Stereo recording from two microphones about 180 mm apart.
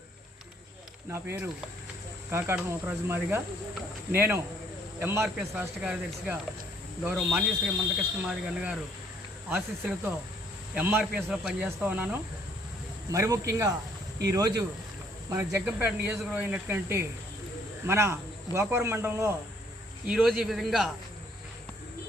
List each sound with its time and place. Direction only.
1.1 s speech: 15° right (ahead or behind)
20.1 s speech: 5° right (ahead or behind)